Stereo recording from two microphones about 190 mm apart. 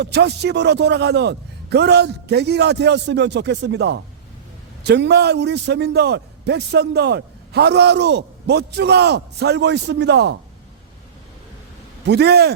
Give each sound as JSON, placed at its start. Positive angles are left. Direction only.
{"t": 0.0, "sound": "a man's voice", "side_deg": -60}
{"t": 12.0, "sound": "a man's voice", "side_deg": -60}